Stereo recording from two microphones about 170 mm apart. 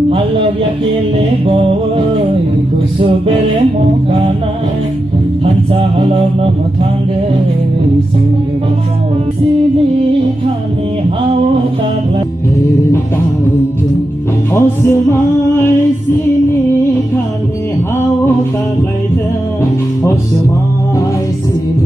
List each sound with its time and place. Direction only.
1.5 s music: 35° right (ahead or behind)
5.4 s music: 35° right (ahead or behind)
14.5 s music: 15° left (ahead or behind)